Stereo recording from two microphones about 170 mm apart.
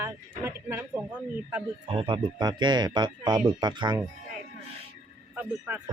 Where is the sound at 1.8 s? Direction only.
30° right (ahead or behind).